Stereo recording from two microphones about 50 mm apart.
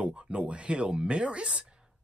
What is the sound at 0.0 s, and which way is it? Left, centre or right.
Speech, right.